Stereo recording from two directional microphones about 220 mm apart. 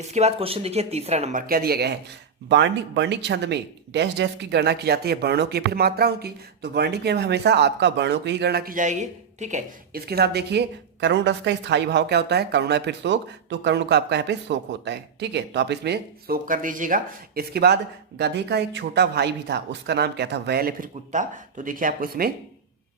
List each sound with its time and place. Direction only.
0.0 s speech: 30° right (ahead or behind)